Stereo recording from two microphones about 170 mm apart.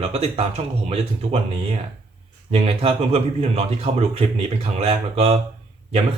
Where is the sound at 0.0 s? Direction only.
40° right (ahead or behind).